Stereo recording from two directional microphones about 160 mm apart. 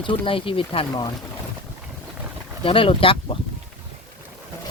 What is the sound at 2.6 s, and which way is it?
Speech, 35° left (ahead or behind).